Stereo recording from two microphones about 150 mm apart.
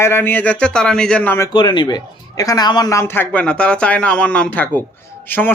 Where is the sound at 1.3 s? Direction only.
25° left (ahead or behind).